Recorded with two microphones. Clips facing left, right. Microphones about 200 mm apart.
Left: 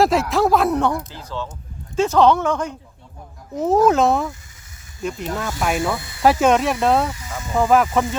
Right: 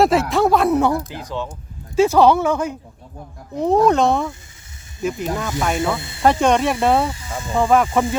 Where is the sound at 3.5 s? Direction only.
5° left (ahead or behind).